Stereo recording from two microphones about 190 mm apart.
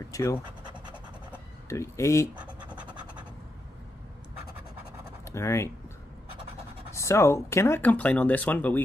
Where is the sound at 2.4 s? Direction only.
5° right (ahead or behind).